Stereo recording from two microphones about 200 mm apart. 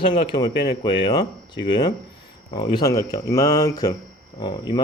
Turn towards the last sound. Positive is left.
turn(degrees=20)  # may be behind; listen again after turning